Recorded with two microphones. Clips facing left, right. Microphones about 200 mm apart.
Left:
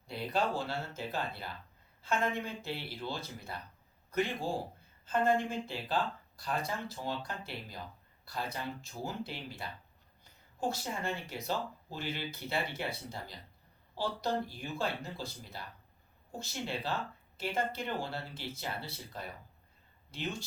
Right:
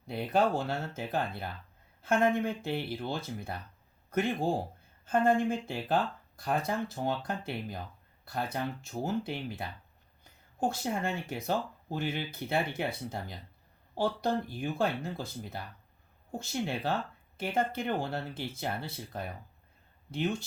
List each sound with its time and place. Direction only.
0.1 s a man's voice: 55° right (ahead or behind)
10.7 s speech: 50° right (ahead or behind)